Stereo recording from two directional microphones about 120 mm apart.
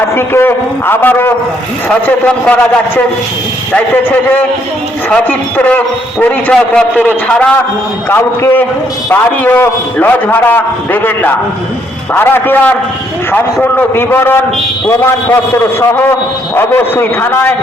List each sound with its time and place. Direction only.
0.2 s a man's voice: 20° left (ahead or behind)